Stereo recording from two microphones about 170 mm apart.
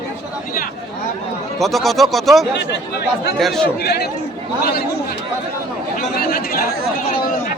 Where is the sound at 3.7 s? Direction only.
70° left (ahead or behind).